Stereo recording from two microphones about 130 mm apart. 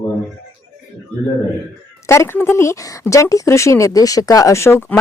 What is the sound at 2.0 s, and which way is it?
Speech, 20° left (ahead or behind).